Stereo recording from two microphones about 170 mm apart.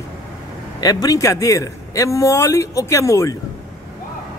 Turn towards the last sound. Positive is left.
turn(degrees=20)  # may be behind; listen again after turning